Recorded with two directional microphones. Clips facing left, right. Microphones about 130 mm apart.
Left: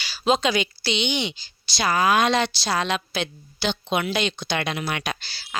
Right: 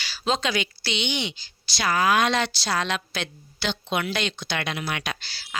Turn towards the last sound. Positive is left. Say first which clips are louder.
# left 3 dB
turn(degrees=20)  # may be behind; listen again after turning